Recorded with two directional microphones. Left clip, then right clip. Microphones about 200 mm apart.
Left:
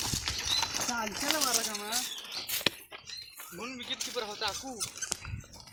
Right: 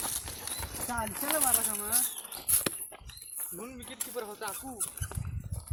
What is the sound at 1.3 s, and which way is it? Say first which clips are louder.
Speech: left 1 dB; 50° right (ahead or behind).